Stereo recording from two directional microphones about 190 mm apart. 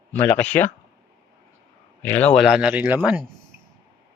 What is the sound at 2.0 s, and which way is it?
Speech, 10° left (ahead or behind).